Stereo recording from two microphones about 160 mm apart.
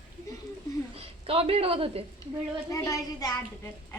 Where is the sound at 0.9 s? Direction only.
35° right (ahead or behind).